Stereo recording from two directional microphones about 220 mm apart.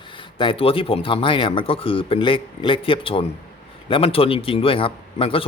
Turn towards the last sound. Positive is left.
turn(degrees=25)  # may be behind; listen again after turning